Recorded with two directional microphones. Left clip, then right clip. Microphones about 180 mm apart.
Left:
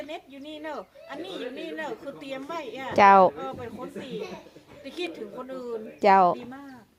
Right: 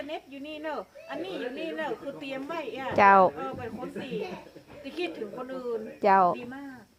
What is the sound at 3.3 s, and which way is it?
Speech, 10° left (ahead or behind).